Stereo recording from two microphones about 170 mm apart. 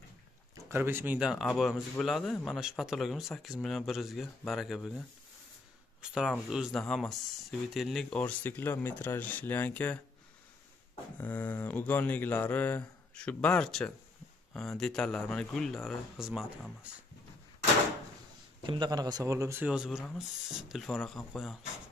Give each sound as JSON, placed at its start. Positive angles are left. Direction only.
{"t": 0.7, "sound": "speech", "side_deg": -15}
{"t": 11.1, "sound": "speech", "side_deg": 10}
{"t": 18.6, "sound": "speech", "side_deg": -25}